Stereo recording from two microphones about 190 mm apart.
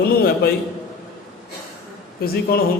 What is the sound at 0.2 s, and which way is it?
Speech, 55° left (ahead or behind).